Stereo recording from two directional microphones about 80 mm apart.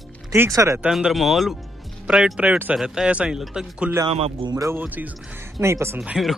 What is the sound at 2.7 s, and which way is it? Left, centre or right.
Speech, centre.